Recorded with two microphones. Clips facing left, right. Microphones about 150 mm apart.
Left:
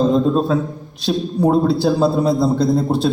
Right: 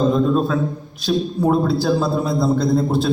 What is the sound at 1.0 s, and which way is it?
A man's voice, 30° left (ahead or behind).